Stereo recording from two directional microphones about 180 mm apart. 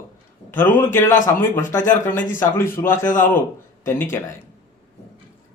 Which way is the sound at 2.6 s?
15° left (ahead or behind).